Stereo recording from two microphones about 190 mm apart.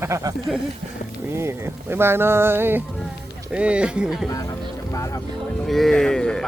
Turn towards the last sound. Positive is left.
turn(degrees=5)  # may be behind; listen again after turning